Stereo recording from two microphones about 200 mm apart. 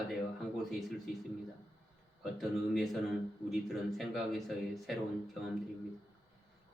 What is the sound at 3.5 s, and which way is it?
Speech, centre (ahead or behind).